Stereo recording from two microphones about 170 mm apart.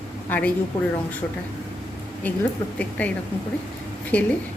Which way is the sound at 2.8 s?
10° left (ahead or behind).